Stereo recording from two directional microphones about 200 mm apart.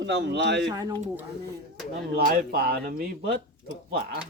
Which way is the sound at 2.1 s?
45° right (ahead or behind).